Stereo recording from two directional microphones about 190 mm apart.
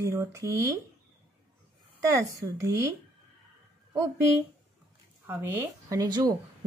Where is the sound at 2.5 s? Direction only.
15° right (ahead or behind).